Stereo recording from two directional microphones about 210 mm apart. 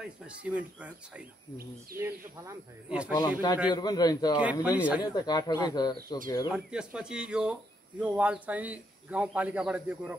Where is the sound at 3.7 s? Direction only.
20° left (ahead or behind).